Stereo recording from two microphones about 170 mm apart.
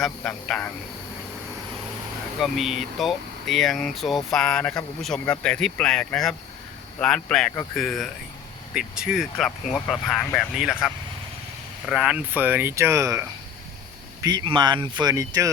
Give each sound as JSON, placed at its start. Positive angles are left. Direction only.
{"t": 0.0, "sound": "speech", "side_deg": 5}
{"t": 2.4, "sound": "speech", "side_deg": 0}
{"t": 14.3, "sound": "speech", "side_deg": -25}